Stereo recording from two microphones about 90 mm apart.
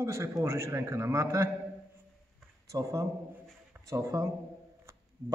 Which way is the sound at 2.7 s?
40° right (ahead or behind).